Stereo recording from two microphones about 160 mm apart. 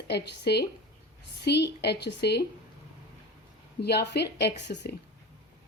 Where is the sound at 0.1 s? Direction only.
90° left.